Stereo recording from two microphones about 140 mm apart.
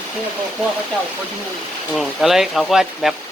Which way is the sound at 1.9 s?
Centre (ahead or behind).